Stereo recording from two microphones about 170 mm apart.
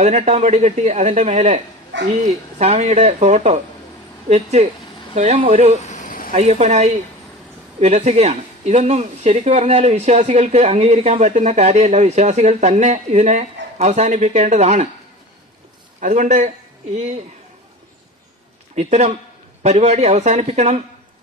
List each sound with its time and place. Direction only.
0.0 s speech: 45° right (ahead or behind)
5.8 s a sound: 45° left (ahead or behind)
6.3 s speech: 40° right (ahead or behind)
16.0 s speech: 50° right (ahead or behind)
18.8 s speech: 40° right (ahead or behind)